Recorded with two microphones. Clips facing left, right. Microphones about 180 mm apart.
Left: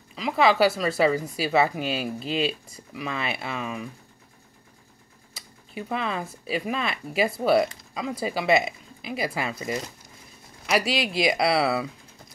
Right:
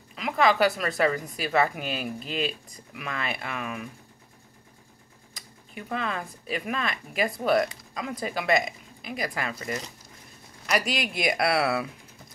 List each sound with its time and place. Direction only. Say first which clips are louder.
0.1 s speech: left 2 dB; centre (ahead or behind)
2.1 s speech: left 4 dB; 35° left (ahead or behind)
2.9 s speech: left 3 dB; centre (ahead or behind)
5.3 s a sound: left 5 dB; 5° left (ahead or behind)
6.4 s speech: left 2 dB; 5° left (ahead or behind)
11.3 s speech: right 1 dB; centre (ahead or behind)